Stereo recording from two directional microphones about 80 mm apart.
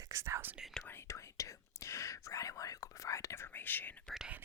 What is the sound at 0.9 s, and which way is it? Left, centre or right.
Speech, left.